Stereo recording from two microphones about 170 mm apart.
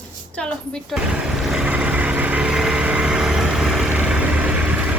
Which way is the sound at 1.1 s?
5° right (ahead or behind).